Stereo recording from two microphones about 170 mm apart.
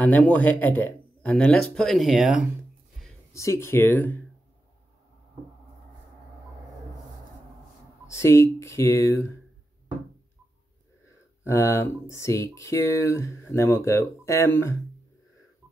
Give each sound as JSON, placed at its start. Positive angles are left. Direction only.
{"t": 0.0, "sound": "speech", "side_deg": 10}
{"t": 3.3, "sound": "speech", "side_deg": 15}
{"t": 8.1, "sound": "speech", "side_deg": 15}
{"t": 11.4, "sound": "speech", "side_deg": 15}